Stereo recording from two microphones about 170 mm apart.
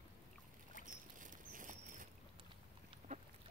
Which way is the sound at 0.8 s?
50° right (ahead or behind).